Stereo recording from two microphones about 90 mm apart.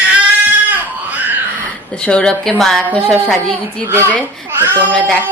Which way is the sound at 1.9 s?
10° left (ahead or behind).